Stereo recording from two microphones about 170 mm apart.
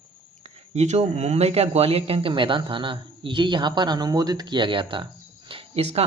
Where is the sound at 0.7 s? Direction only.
40° right (ahead or behind).